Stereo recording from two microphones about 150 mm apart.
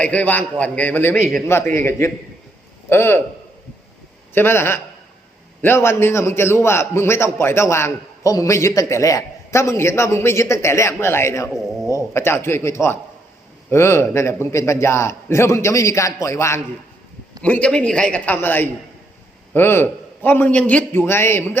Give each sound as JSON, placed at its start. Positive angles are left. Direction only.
{"t": 0.0, "sound": "a man's voice", "side_deg": 10}
{"t": 4.4, "sound": "a man's voice", "side_deg": 15}
{"t": 17.4, "sound": "a man's voice", "side_deg": 5}